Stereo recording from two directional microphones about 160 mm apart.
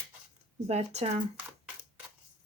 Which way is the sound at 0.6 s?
40° right (ahead or behind).